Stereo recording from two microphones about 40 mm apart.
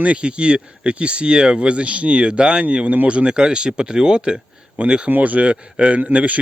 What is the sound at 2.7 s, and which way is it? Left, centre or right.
Speech, right.